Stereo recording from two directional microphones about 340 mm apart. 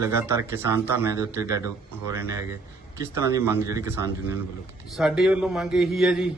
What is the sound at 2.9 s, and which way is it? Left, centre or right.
Speech, centre.